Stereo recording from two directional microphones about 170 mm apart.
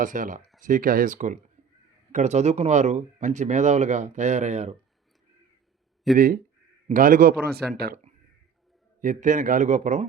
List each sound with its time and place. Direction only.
0.0 s speech: 50° right (ahead or behind)
6.1 s a man's voice: 55° right (ahead or behind)
9.0 s speech: 50° right (ahead or behind)